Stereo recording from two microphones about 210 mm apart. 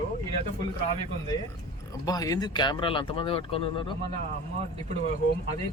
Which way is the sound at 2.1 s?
15° left (ahead or behind).